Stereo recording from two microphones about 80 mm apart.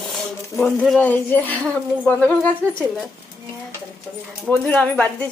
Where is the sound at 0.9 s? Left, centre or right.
Left.